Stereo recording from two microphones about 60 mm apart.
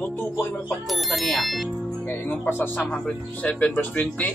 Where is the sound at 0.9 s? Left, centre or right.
Centre.